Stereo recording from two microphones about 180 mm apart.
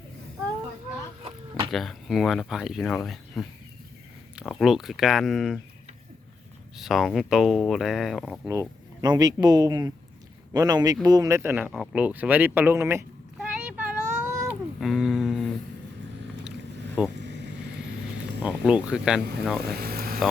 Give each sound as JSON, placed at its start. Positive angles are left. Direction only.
{"t": 1.2, "sound": "a sound", "side_deg": -30}
{"t": 1.7, "sound": "speech", "side_deg": 0}
{"t": 6.7, "sound": "speech", "side_deg": 0}
{"t": 9.0, "sound": "speech", "side_deg": -20}
{"t": 14.4, "sound": "a sound", "side_deg": 0}
{"t": 17.2, "sound": "vehicle", "side_deg": -70}
{"t": 18.4, "sound": "speech", "side_deg": -5}
{"t": 19.7, "sound": "vehicle", "side_deg": -60}